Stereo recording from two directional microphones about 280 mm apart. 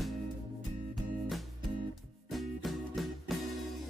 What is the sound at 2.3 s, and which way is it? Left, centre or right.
Music, centre.